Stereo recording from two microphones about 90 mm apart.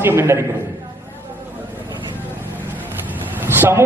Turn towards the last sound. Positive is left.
turn(degrees=-25)  # may be behind; listen again after turning